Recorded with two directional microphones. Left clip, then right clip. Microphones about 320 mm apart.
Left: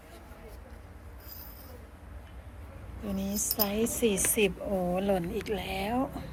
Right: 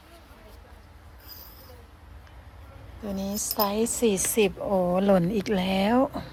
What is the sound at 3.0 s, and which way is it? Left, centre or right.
Speech, right.